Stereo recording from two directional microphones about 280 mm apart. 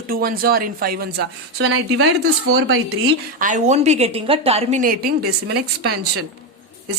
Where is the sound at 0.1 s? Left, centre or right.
Right.